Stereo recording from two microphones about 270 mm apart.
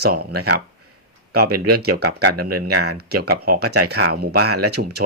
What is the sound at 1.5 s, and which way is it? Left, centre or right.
Speech, right.